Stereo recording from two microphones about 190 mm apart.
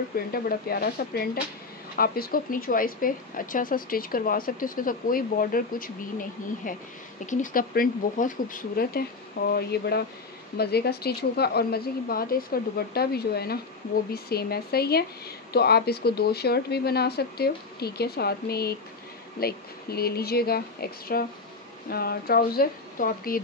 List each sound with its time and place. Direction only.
0.1 s speech: 50° left (ahead or behind)